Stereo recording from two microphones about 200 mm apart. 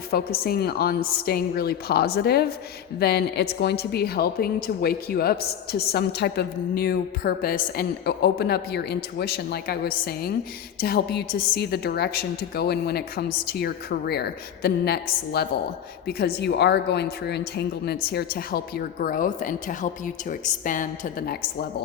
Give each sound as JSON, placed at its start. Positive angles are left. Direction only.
{"t": 0.1, "sound": "a woman's voice", "side_deg": 50}